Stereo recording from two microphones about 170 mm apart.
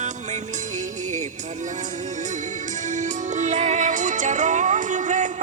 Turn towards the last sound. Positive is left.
turn(degrees=-45)  # may be behind; listen again after turning